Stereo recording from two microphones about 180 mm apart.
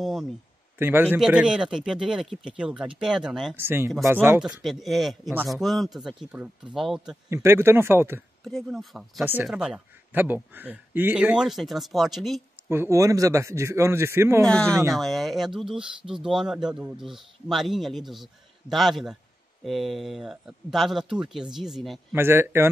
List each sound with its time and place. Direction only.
0.0 s a man's voice: centre (ahead or behind)
7.2 s a man's voice: 15° right (ahead or behind)
8.5 s speech: centre (ahead or behind)
9.2 s a man's voice: 10° right (ahead or behind)
12.6 s a man's voice: 15° right (ahead or behind)
14.4 s speech: 5° left (ahead or behind)
22.1 s a man's voice: 15° right (ahead or behind)